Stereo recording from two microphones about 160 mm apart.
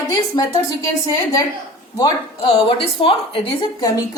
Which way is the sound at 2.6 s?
35° left (ahead or behind).